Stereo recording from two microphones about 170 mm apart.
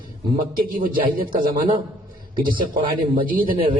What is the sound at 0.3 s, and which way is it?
A man's voice, 55° right (ahead or behind).